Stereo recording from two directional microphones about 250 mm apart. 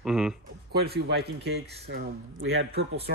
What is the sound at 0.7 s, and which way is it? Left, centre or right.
Speech, right.